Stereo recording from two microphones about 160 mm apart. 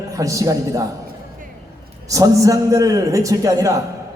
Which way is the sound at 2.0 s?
20° right (ahead or behind).